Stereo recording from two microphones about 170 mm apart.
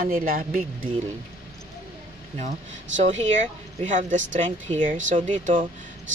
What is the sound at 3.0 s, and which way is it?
Speech, 45° right (ahead or behind).